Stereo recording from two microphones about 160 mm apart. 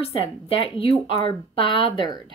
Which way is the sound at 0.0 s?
35° left (ahead or behind).